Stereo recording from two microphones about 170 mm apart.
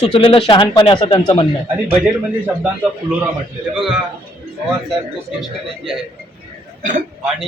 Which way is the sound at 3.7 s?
Centre (ahead or behind).